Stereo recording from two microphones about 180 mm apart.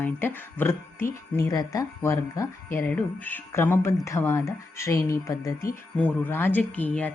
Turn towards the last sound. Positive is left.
turn(degrees=10)  # may be behind; listen again after turning